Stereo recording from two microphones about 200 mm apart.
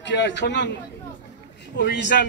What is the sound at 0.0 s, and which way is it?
Speech, 60° left (ahead or behind).